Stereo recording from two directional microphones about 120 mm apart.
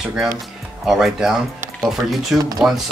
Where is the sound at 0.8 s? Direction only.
5° right (ahead or behind).